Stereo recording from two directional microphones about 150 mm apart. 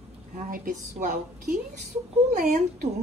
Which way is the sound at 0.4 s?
60° right (ahead or behind).